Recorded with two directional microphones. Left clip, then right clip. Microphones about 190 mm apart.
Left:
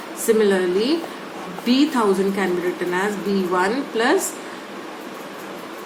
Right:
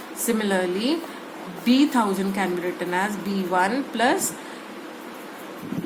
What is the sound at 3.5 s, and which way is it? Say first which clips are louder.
Speech: right 1 dB; 40° right (ahead or behind).